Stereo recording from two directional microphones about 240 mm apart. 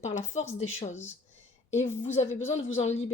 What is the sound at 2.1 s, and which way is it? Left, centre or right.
Speech, left.